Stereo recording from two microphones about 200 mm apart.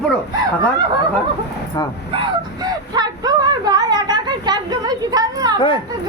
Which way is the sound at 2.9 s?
20° right (ahead or behind).